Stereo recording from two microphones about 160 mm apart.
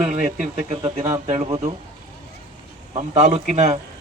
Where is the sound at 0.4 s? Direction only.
40° right (ahead or behind).